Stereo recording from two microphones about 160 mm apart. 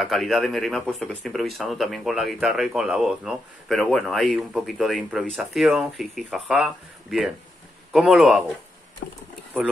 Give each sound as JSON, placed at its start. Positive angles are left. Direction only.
{"t": 0.0, "sound": "speech", "side_deg": 0}
{"t": 9.0, "sound": "speech", "side_deg": 90}